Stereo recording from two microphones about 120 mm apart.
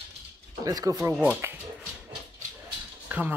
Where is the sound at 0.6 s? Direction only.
30° right (ahead or behind).